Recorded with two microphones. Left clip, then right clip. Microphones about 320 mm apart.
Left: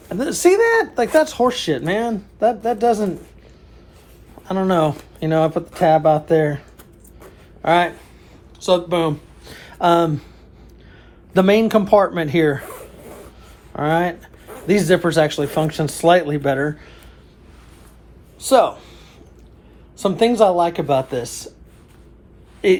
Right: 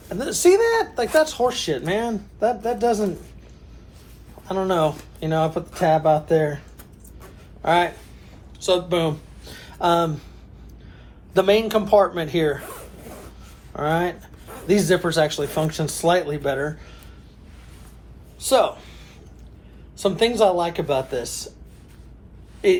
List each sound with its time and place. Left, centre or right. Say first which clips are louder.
0.1 s speech: left 1 dB; left
4.4 s speech: left 3 dB; left
11.3 s speech: left 3 dB; left
13.7 s speech: left 4 dB; left
18.4 s speech: left 4 dB; left
20.0 s speech: left 3 dB; left
22.6 s speech: left 2 dB; left